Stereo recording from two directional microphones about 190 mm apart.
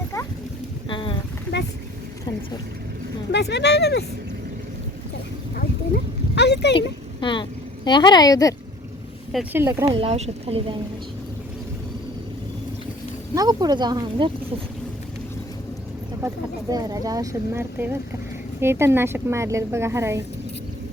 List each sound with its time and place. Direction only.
0.9 s a sound: 25° left (ahead or behind)
3.3 s speech: 65° left (ahead or behind)
6.3 s a sound: 65° left (ahead or behind)
6.7 s a woman's voice: 25° left (ahead or behind)
9.3 s speech: 10° right (ahead or behind)
9.9 s speech: 35° right (ahead or behind)
13.3 s speech: 20° right (ahead or behind)
16.2 s speech: 20° right (ahead or behind)